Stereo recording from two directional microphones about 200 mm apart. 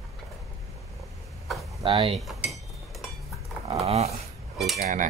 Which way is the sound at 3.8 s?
30° right (ahead or behind).